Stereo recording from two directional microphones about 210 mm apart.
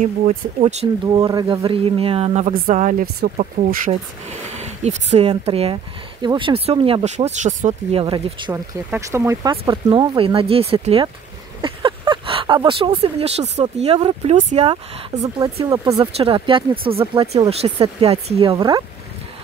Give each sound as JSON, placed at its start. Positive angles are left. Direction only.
{"t": 0.6, "sound": "speech", "side_deg": -30}
{"t": 1.0, "sound": "speech", "side_deg": -20}
{"t": 8.5, "sound": "speech", "side_deg": -10}